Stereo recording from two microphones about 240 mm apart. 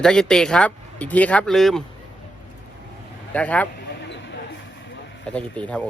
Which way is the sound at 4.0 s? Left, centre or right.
Left.